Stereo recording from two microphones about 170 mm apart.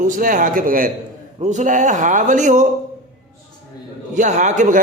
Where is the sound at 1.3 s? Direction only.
45° right (ahead or behind).